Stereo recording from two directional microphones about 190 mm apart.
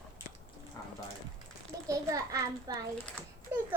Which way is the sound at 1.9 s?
15° right (ahead or behind).